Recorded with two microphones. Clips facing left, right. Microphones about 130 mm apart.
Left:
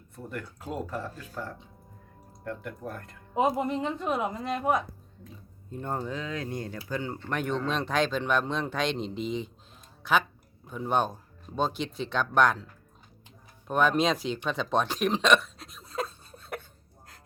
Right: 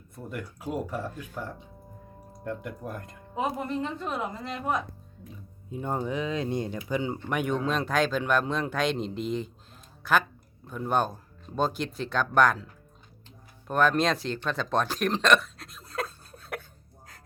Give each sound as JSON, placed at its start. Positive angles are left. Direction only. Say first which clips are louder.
{"t": 0.3, "sound": "speech", "louder": "right 2 dB", "side_deg": -10}
{"t": 3.3, "sound": "a woman's voice", "louder": "left 4 dB", "side_deg": 20}
{"t": 5.7, "sound": "speech", "louder": "right 3 dB", "side_deg": -10}
{"t": 10.7, "sound": "speech", "louder": "even", "side_deg": 0}
{"t": 13.7, "sound": "speech", "louder": "even", "side_deg": 0}